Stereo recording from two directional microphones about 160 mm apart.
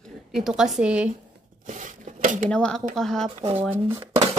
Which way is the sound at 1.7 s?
50° right (ahead or behind).